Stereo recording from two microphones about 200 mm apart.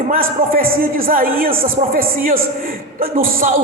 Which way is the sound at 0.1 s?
45° right (ahead or behind).